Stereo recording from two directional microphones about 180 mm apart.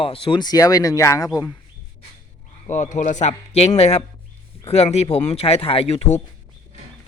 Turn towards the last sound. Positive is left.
turn(degrees=35)  # may be behind; listen again after turning